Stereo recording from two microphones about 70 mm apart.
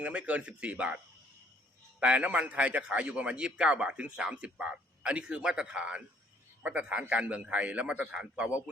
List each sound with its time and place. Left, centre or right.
0.0 s a man's voice: centre